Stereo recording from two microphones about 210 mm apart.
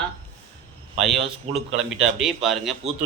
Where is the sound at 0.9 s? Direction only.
Centre (ahead or behind).